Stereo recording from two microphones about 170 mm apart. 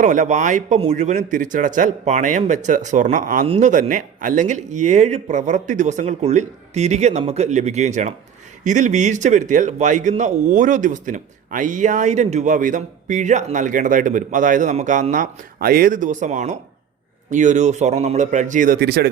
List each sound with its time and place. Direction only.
0.0 s speech: 50° right (ahead or behind)
3.4 s speech: 40° right (ahead or behind); by 19.0 s 70° right (ahead or behind)